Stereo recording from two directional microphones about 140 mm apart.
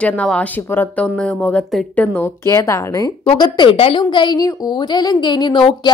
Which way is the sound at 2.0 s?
15° left (ahead or behind).